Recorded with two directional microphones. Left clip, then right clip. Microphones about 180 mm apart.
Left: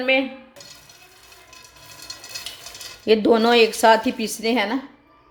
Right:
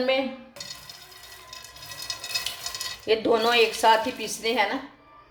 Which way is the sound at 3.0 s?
55° left (ahead or behind).